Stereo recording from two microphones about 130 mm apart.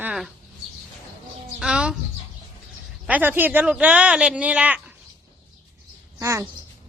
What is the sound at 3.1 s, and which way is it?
Speech, 15° right (ahead or behind).